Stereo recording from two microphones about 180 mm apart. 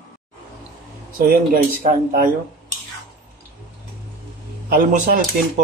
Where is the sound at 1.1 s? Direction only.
50° right (ahead or behind).